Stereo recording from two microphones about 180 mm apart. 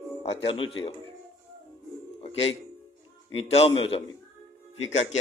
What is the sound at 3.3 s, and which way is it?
Speech, 35° left (ahead or behind).